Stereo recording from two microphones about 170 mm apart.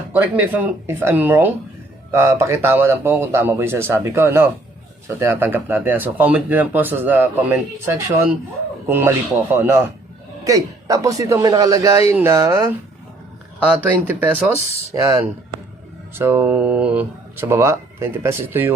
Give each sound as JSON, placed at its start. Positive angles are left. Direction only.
{"t": 0.1, "sound": "a man's voice", "side_deg": -10}